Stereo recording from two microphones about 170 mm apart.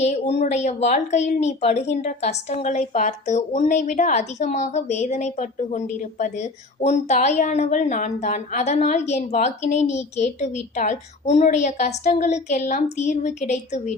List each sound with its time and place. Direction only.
0.0 s speech: 40° left (ahead or behind)